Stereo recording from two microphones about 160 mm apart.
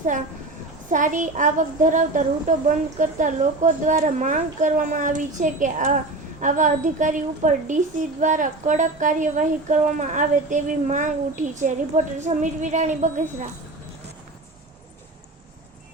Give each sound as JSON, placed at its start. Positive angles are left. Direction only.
{"t": 0.9, "sound": "speech", "side_deg": -55}